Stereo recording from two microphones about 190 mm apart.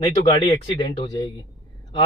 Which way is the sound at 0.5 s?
25° left (ahead or behind).